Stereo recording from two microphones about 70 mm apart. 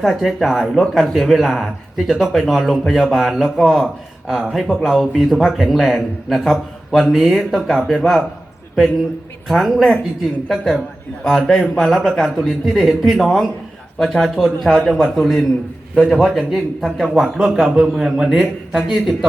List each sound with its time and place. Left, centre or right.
0.0 s speech: centre
9.5 s a man's voice: centre